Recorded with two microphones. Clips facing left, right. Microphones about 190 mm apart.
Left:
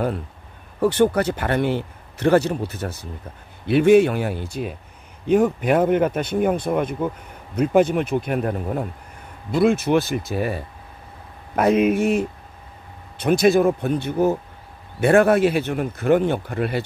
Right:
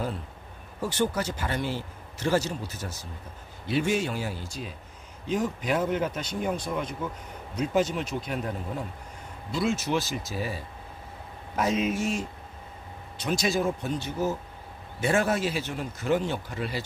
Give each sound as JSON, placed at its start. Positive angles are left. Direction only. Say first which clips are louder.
{"t": 0.7, "sound": "a man's voice", "louder": "left 10 dB", "side_deg": 60}